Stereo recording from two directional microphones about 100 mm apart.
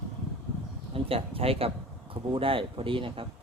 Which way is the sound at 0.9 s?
70° right (ahead or behind).